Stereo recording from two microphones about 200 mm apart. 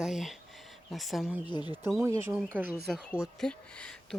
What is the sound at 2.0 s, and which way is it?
Speech, 15° right (ahead or behind).